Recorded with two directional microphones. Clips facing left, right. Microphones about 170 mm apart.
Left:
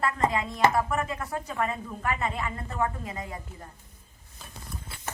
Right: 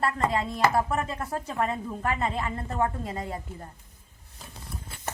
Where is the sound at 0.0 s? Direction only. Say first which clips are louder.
Even; 30° right (ahead or behind).